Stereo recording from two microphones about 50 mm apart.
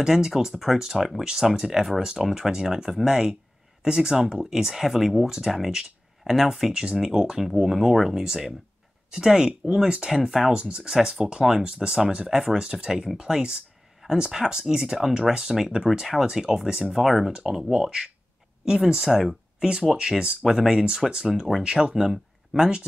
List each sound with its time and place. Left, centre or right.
0.0 s speech: centre
10.2 s speech: centre
10.5 s speech: centre
21.6 s speech: centre